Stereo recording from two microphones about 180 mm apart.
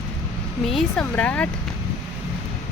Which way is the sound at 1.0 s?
10° left (ahead or behind).